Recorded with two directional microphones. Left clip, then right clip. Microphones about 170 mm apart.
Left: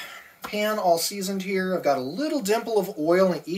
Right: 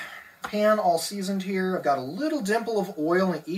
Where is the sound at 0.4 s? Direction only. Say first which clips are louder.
Right 3 dB; 50° left (ahead or behind).